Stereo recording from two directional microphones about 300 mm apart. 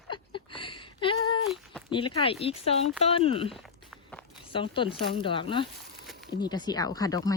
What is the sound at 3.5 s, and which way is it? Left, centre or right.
Walk, centre.